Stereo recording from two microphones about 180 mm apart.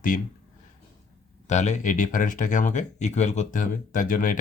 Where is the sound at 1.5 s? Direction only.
40° left (ahead or behind).